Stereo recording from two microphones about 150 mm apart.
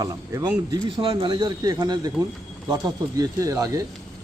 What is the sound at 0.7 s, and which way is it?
Speech, 35° right (ahead or behind).